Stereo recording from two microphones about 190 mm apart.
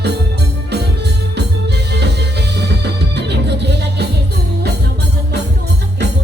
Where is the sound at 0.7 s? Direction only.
60° right (ahead or behind).